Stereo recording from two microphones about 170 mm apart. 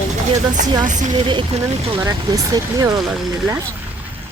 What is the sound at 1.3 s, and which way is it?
Speech, 30° right (ahead or behind).